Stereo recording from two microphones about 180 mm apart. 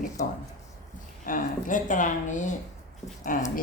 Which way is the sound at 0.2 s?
50° left (ahead or behind).